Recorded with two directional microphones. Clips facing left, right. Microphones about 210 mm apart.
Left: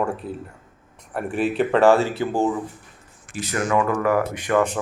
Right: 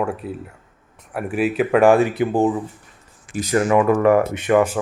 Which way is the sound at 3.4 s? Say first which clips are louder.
Right 5 dB; 30° right (ahead or behind).